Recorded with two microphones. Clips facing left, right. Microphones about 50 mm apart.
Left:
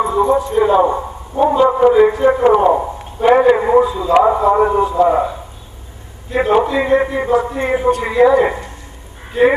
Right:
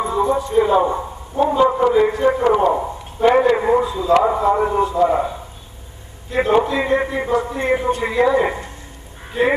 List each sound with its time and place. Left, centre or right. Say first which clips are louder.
0.0 s a sound: left 4 dB; centre
1.3 s a man's voice: left 3 dB; centre
2.4 s a man's voice: left 4 dB; centre
6.3 s a man's voice: left 2 dB; centre